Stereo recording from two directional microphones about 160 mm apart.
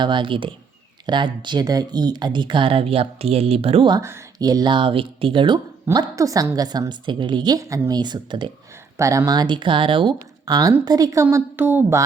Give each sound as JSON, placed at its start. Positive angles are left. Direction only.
{"t": 0.0, "sound": "speech", "side_deg": -30}
{"t": 4.0, "sound": "speech", "side_deg": -20}